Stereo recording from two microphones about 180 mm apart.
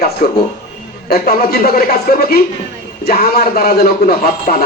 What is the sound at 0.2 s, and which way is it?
A man's voice, 50° left (ahead or behind).